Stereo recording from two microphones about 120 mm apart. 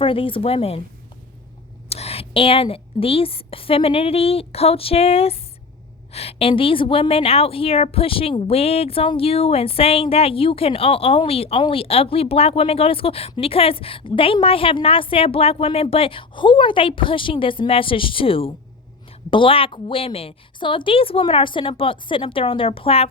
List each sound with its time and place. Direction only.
0.0 s a woman's voice: 50° left (ahead or behind)
1.9 s a woman's voice: 55° left (ahead or behind)